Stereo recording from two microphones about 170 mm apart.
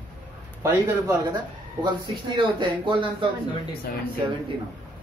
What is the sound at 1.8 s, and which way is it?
Speech, 30° right (ahead or behind).